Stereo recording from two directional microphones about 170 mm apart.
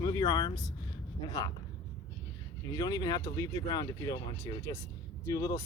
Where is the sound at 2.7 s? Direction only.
25° left (ahead or behind).